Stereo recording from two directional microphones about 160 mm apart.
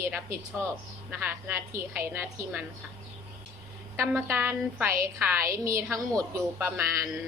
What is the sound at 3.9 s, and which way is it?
A woman's voice, 15° right (ahead or behind).